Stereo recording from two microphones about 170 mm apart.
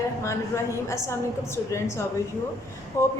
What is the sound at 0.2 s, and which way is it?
A woman's voice, 15° left (ahead or behind).